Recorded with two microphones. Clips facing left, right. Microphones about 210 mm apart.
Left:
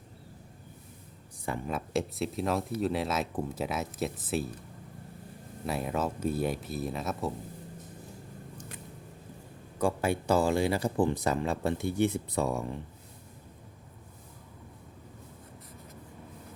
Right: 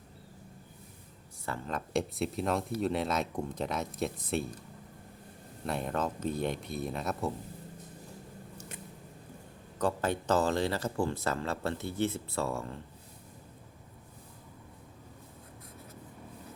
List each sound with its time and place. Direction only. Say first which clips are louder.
1.5 s speech: left 3 dB; 15° left (ahead or behind)
5.6 s speech: left 1 dB; 5° left (ahead or behind)
9.7 s speech: left 2 dB; 10° left (ahead or behind)